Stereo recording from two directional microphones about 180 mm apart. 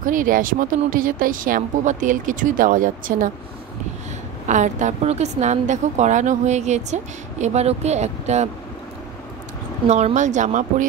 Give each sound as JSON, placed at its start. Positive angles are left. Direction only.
{"t": 0.0, "sound": "a woman's voice", "side_deg": -50}
{"t": 4.5, "sound": "a woman's voice", "side_deg": -45}
{"t": 9.8, "sound": "a woman's voice", "side_deg": -40}